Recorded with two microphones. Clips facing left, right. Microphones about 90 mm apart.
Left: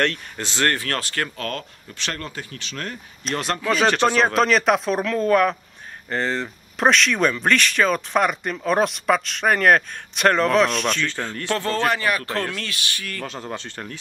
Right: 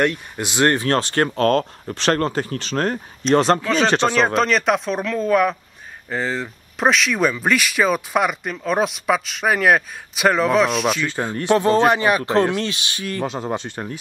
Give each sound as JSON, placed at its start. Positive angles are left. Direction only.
{"t": 0.0, "sound": "speech", "side_deg": -15}
{"t": 3.6, "sound": "speech", "side_deg": 5}